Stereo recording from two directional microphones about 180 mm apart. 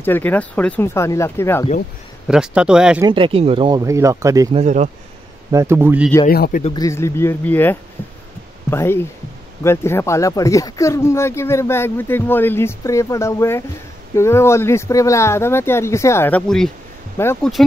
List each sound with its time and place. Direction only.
0.0 s speech: 10° left (ahead or behind)
2.2 s speech: 5° right (ahead or behind)
3.0 s speech: 25° right (ahead or behind)
4.5 s speech: 40° right (ahead or behind)
5.5 s a man's voice: 15° right (ahead or behind)
6.2 s a man's voice: 55° left (ahead or behind)
6.6 s speech: 20° left (ahead or behind); by 16.7 s 5° left (ahead or behind)
17.2 s speech: 15° left (ahead or behind)